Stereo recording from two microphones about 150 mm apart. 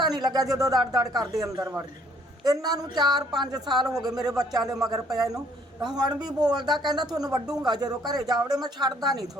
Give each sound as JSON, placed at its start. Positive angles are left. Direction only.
{"t": 0.0, "sound": "speech", "side_deg": -25}
{"t": 3.7, "sound": "speech", "side_deg": 0}
{"t": 4.0, "sound": "speech", "side_deg": -25}